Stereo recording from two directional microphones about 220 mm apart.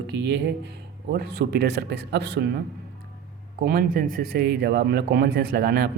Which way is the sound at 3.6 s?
40° right (ahead or behind).